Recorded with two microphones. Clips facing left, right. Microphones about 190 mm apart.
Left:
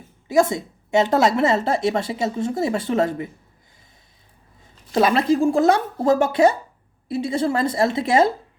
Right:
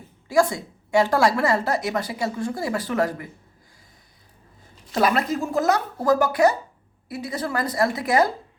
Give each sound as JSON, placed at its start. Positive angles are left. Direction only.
{"t": 0.3, "sound": "a woman's voice", "side_deg": 20}
{"t": 4.9, "sound": "a woman's voice", "side_deg": 25}